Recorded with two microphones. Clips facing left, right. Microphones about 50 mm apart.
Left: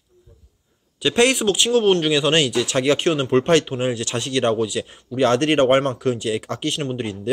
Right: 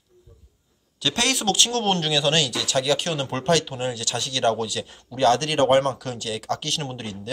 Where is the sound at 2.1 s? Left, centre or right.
Left.